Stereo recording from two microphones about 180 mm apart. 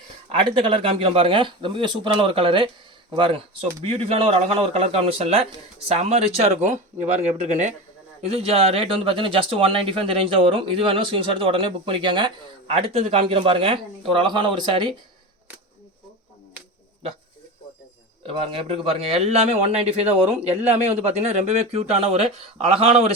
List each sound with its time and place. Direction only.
0.3 s a man's voice: 30° right (ahead or behind)
18.3 s a man's voice: 30° right (ahead or behind)